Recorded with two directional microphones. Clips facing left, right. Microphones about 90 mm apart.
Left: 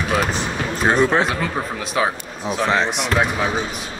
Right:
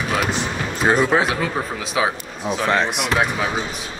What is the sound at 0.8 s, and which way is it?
Speech, 5° right (ahead or behind).